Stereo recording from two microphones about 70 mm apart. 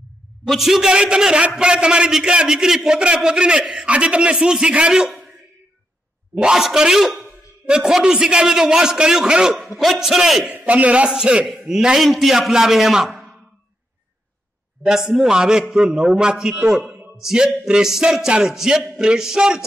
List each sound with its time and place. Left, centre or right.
0.5 s a man's voice: centre
6.4 s a man's voice: centre
10.4 s a man's voice: centre
14.9 s a man's voice: centre